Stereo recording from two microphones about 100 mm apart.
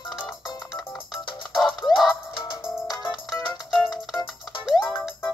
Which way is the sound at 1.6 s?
Centre (ahead or behind).